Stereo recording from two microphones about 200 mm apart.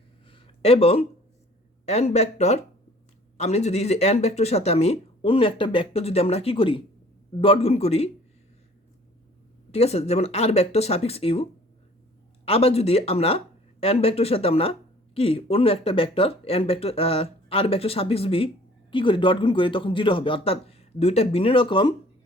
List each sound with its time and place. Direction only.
0.3 s a sound: 25° left (ahead or behind)
1.8 s speech: 35° left (ahead or behind)
9.7 s speech: 30° left (ahead or behind)
12.5 s speech: 30° left (ahead or behind)